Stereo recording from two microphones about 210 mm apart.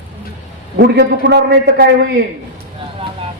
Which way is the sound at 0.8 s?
50° right (ahead or behind).